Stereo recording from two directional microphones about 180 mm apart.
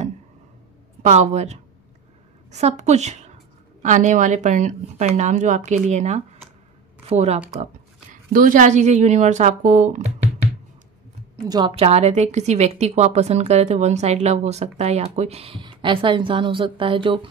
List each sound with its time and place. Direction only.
1.0 s speech: 40° right (ahead or behind)
11.4 s a woman's voice: 20° right (ahead or behind)
11.7 s a woman's voice: 35° right (ahead or behind)